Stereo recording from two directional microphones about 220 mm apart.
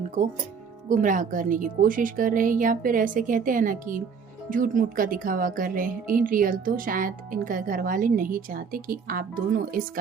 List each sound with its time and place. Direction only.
0.9 s speech: 35° right (ahead or behind)